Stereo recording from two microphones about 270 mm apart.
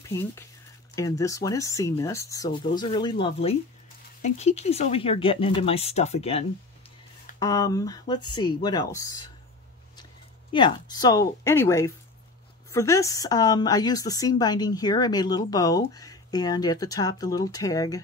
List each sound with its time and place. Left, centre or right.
0.1 s a woman's voice: centre
7.3 s a woman's voice: centre
10.5 s a woman's voice: centre